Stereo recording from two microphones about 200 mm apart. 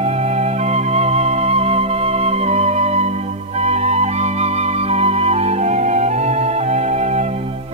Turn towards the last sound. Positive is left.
turn(degrees=-35)  # may be behind; listen again after turning